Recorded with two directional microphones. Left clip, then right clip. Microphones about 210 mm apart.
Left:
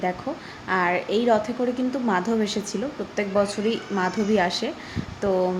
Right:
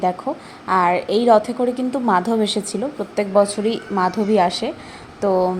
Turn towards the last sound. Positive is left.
turn(degrees=-15)  # may be behind; listen again after turning